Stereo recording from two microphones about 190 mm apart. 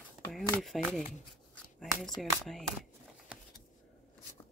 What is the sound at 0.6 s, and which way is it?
Speech, centre (ahead or behind).